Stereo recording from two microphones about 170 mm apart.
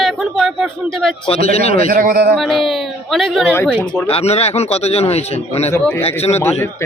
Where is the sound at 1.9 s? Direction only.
60° right (ahead or behind).